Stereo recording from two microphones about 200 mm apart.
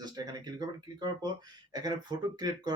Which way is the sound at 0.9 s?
20° right (ahead or behind).